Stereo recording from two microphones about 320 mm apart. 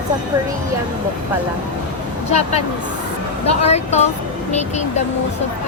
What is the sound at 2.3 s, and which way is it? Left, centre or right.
Speech, centre.